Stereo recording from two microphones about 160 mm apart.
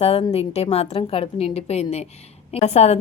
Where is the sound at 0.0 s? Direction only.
40° left (ahead or behind).